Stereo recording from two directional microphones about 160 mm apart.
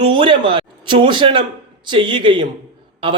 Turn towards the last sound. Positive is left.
turn(degrees=-35)  # may be behind; listen again after turning